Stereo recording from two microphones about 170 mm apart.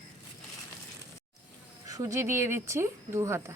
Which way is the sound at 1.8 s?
20° right (ahead or behind).